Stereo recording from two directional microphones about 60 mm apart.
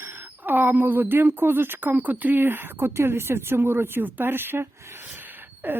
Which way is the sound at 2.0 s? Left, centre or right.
Right.